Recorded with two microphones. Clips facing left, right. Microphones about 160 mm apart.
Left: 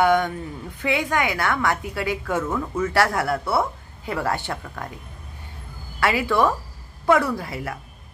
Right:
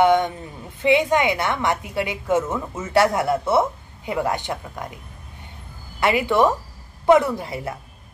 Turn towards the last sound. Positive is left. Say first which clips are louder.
# right 1 dB
turn(degrees=-20)  # may be behind; listen again after turning